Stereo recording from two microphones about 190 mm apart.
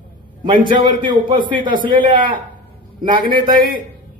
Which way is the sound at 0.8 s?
25° right (ahead or behind).